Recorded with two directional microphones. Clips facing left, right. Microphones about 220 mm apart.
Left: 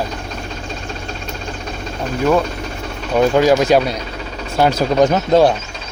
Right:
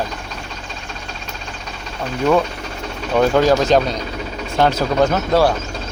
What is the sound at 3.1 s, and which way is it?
Speech, 10° left (ahead or behind).